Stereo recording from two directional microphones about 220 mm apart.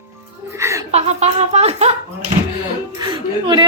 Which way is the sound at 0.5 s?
15° right (ahead or behind).